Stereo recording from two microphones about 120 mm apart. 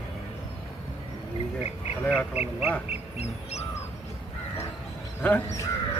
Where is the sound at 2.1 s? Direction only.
10° right (ahead or behind).